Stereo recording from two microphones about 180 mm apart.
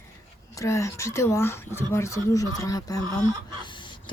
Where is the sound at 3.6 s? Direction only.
25° left (ahead or behind).